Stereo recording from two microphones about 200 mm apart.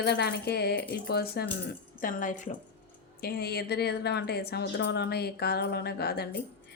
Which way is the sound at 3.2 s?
50° left (ahead or behind).